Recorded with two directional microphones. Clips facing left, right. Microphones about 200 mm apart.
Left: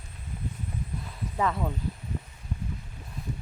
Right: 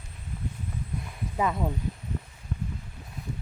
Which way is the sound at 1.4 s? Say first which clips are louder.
Right 1 dB; 15° right (ahead or behind).